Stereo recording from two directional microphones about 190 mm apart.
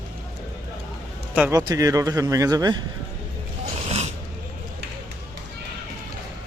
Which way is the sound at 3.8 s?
35° right (ahead or behind).